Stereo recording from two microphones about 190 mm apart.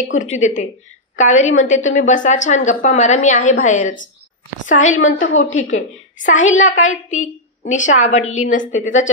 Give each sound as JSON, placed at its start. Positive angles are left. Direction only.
{"t": 0.4, "sound": "a woman's voice", "side_deg": 40}
{"t": 5.2, "sound": "a woman's voice", "side_deg": 90}
{"t": 5.8, "sound": "a woman's voice", "side_deg": 40}